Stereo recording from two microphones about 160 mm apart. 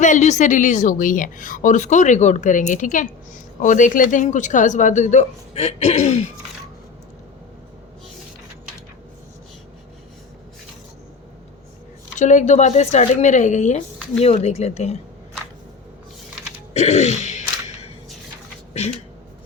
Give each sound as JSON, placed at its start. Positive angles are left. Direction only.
{"t": 0.0, "sound": "a woman's voice", "side_deg": 50}
{"t": 12.1, "sound": "a woman's voice", "side_deg": 50}
{"t": 16.7, "sound": "a woman's voice", "side_deg": 45}
{"t": 18.7, "sound": "speech", "side_deg": 40}